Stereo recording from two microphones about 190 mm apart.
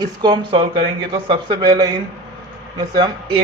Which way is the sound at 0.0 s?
25° right (ahead or behind).